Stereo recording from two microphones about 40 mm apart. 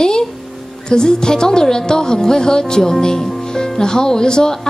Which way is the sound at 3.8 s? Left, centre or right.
Centre.